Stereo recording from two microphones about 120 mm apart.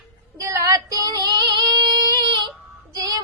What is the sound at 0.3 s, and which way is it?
Female singing, 25° right (ahead or behind).